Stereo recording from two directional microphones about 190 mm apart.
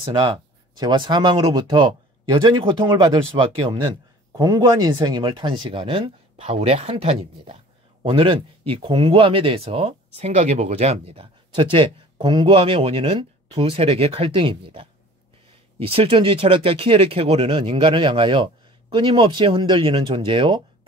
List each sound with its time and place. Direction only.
0.7 s speech: 25° right (ahead or behind)